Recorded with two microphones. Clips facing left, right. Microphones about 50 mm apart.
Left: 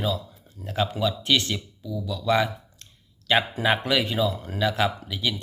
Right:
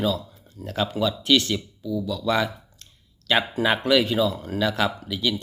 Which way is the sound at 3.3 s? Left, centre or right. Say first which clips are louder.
Even; centre.